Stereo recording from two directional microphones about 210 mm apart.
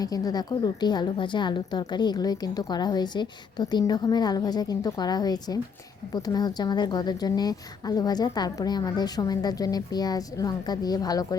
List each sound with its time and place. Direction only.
0.0 s a woman's voice: 15° left (ahead or behind)